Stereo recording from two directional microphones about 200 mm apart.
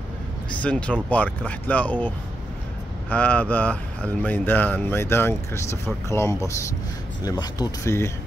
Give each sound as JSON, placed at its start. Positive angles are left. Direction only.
{"t": 0.6, "sound": "speech", "side_deg": 5}